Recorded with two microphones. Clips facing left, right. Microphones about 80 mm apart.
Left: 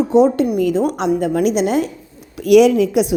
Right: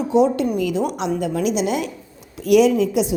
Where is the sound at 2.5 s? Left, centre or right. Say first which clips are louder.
Left 4 dB; left.